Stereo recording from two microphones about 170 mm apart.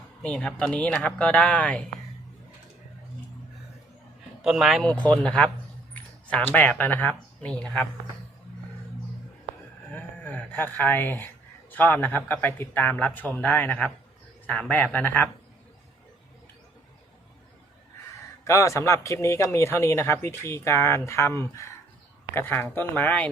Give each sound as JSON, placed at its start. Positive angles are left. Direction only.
{"t": 0.2, "sound": "speech", "side_deg": 5}
{"t": 4.4, "sound": "speech", "side_deg": 0}
{"t": 9.9, "sound": "speech", "side_deg": 10}
{"t": 18.4, "sound": "speech", "side_deg": 15}